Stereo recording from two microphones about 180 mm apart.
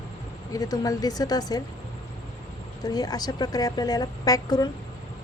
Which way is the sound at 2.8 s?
20° left (ahead or behind).